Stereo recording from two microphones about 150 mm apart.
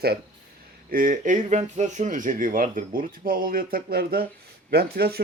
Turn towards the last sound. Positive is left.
turn(degrees=-90)